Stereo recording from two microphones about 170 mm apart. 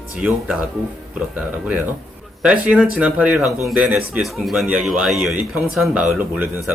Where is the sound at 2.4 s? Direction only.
5° right (ahead or behind).